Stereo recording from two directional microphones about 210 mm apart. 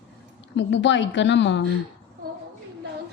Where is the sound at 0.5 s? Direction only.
60° left (ahead or behind).